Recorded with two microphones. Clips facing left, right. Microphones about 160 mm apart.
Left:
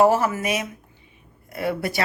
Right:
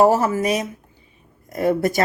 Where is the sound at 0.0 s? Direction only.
35° right (ahead or behind).